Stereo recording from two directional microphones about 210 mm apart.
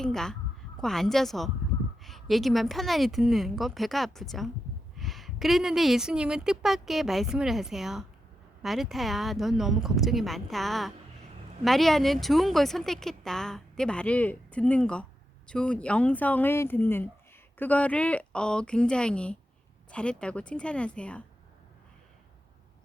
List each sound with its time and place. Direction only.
0.0 s speech: centre (ahead or behind)